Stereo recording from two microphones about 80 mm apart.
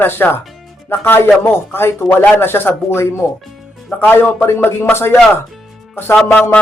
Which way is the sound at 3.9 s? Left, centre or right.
Left.